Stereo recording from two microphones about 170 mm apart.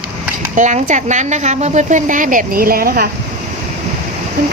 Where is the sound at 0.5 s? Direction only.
45° right (ahead or behind); by 3.1 s 60° right (ahead or behind).